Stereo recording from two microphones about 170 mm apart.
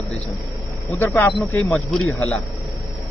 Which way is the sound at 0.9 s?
10° left (ahead or behind).